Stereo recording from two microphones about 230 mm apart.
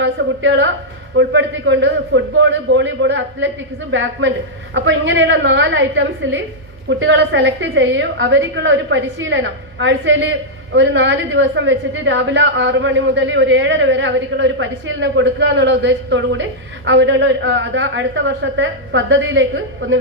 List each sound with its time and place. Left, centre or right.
0.0 s a woman's voice: right